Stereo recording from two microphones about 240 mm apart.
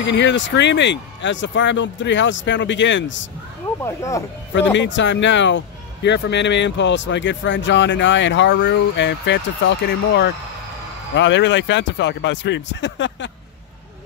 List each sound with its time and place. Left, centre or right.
0.0 s speech: left
3.8 s speech: centre
4.7 s speech: left